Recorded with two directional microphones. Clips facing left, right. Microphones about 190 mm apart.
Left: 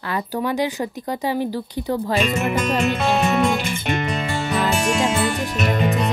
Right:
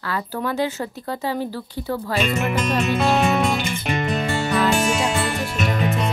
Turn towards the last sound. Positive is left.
turn(degrees=0)  # may be behind; listen again after turning